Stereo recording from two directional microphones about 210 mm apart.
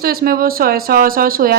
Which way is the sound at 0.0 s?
45° right (ahead or behind).